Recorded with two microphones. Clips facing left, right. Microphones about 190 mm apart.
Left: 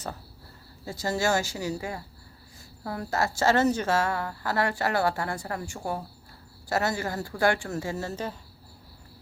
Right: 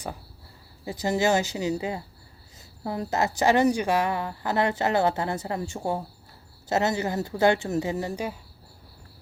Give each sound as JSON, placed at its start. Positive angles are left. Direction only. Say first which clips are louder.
{"t": 0.9, "sound": "a woman's voice", "louder": "right 3 dB", "side_deg": -15}